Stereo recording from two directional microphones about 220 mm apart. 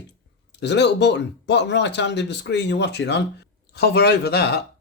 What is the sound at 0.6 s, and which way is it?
Speech, 50° left (ahead or behind).